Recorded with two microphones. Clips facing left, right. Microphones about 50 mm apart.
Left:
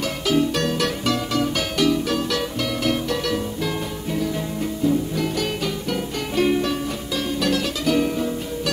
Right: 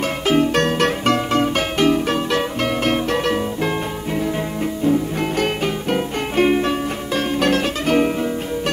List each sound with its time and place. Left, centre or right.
0.3 s music: right
4.8 s music: right